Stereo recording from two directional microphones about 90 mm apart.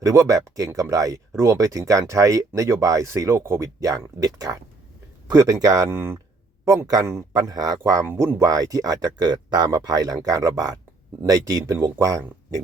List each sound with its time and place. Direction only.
0.0 s speech: 35° right (ahead or behind)
5.9 s speech: 25° right (ahead or behind)
7.1 s speech: 40° right (ahead or behind)
8.0 s speech: 20° right (ahead or behind)
8.4 s speech: 45° right (ahead or behind)